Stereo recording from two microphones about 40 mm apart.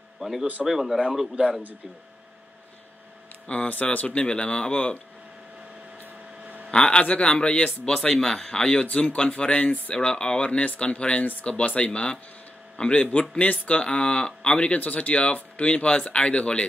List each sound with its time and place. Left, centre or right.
0.2 s speech: centre
3.4 s speech: left
6.7 s speech: left
7.8 s speech: centre; by 9.9 s left
10.0 s speech: left
10.6 s speech: left